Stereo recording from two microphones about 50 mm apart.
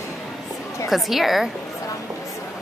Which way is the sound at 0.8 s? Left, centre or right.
Centre.